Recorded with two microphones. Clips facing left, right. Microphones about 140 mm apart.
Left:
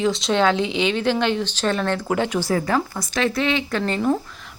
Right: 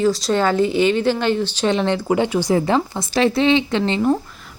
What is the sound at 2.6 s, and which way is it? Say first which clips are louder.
Speech: right 3 dB; 25° right (ahead or behind).